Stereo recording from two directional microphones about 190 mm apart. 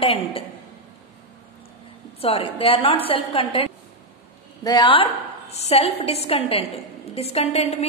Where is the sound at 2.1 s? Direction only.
30° left (ahead or behind).